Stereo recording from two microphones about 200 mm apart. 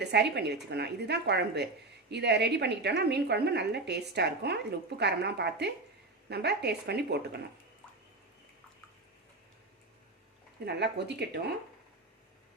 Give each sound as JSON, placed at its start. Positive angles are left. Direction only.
{"t": 0.0, "sound": "a woman's voice", "side_deg": -55}
{"t": 10.8, "sound": "a woman's voice", "side_deg": -55}